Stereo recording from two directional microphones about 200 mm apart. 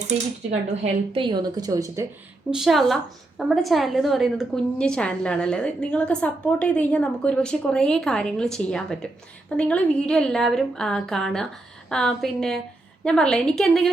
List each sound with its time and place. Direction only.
0.8 s a woman's voice: 25° right (ahead or behind)
2.5 s a woman's voice: centre (ahead or behind)